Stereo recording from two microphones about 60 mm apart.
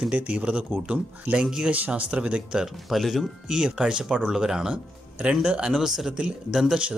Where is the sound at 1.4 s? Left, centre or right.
Centre.